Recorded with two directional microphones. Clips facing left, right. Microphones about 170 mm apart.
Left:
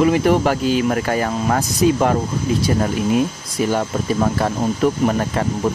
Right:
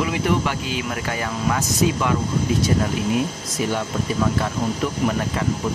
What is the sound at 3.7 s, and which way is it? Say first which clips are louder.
Speech: left 4 dB; 45° left (ahead or behind).